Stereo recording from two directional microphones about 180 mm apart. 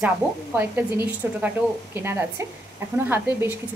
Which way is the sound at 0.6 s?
10° right (ahead or behind).